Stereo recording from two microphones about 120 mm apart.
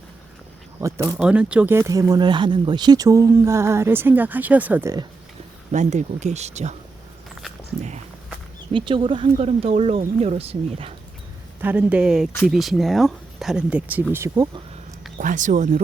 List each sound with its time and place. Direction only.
0.8 s speech: 25° right (ahead or behind)
1.1 s speech: 5° right (ahead or behind)
1.7 s speech: 25° right (ahead or behind)
5.7 s speech: 80° right
7.8 s speech: 70° right (ahead or behind)
8.7 s speech: 45° right (ahead or behind)
10.0 s speech: 65° right (ahead or behind)
11.6 s speech: 10° right (ahead or behind)
15.2 s speech: 90° right